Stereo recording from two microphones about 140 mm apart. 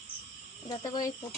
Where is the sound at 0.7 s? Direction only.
30° left (ahead or behind).